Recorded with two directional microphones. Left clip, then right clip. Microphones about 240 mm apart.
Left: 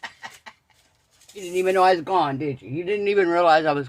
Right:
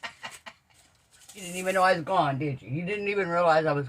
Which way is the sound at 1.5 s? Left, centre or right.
Left.